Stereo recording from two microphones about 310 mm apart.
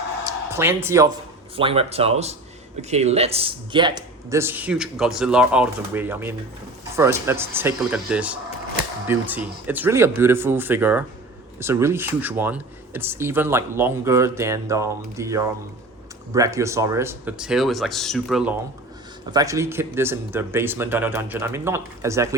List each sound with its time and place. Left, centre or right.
0.5 s speech: centre